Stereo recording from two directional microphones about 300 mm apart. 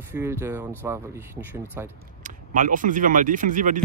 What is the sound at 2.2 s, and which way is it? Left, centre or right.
Speech, right.